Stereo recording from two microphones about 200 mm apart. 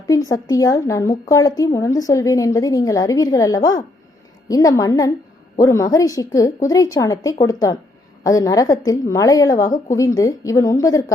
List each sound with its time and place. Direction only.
0.1 s speech: 20° left (ahead or behind)